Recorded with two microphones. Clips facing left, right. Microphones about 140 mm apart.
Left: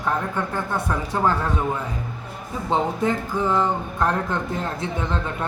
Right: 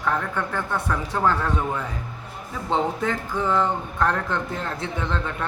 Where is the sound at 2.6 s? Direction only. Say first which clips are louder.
Left 2 dB; 10° left (ahead or behind).